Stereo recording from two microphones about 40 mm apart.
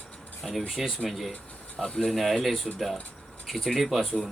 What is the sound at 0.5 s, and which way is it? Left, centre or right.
Speech, centre.